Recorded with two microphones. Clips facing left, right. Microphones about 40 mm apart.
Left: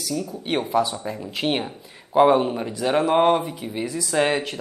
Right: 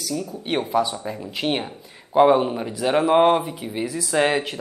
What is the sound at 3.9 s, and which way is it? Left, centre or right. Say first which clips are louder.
Speech: even; right.